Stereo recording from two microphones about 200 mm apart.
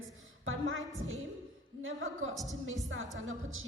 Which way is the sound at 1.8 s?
80° right.